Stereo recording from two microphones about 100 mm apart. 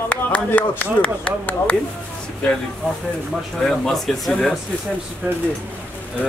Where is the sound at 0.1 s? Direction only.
15° left (ahead or behind).